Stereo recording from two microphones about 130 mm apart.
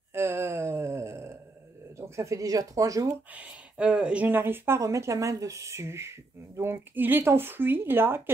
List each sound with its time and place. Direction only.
0.1 s wail: 20° right (ahead or behind)
2.0 s speech: 25° right (ahead or behind)
3.3 s speech: 10° right (ahead or behind)